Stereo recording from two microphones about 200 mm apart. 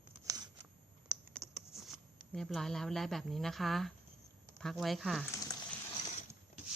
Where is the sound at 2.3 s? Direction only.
Centre (ahead or behind).